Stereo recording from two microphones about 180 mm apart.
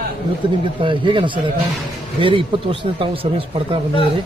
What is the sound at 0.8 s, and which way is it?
Speech, 30° right (ahead or behind).